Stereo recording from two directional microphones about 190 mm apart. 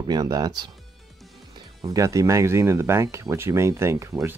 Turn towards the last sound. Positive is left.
turn(degrees=-15)  # may be behind; listen again after turning